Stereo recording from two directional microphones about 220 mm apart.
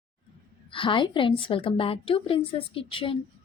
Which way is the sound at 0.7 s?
20° left (ahead or behind).